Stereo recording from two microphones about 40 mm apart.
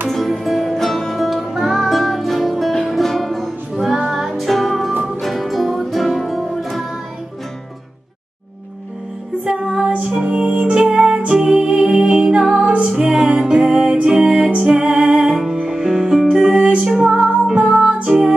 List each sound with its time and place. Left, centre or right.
0.1 s music: centre
9.4 s music: right
14.3 s music: right; by 16.5 s centre
16.5 s music: right
16.8 s music: centre
17.7 s music: right